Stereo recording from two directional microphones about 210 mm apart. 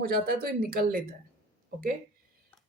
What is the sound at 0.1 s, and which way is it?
Speech, 45° right (ahead or behind).